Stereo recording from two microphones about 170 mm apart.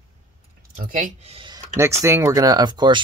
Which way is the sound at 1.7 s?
15° right (ahead or behind).